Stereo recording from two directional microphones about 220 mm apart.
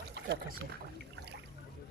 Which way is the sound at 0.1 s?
50° right (ahead or behind).